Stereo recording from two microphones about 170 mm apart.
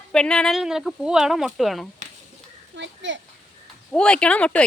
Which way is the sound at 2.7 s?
90° right.